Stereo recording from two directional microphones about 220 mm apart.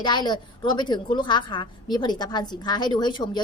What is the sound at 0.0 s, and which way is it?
A woman's voice, 20° left (ahead or behind).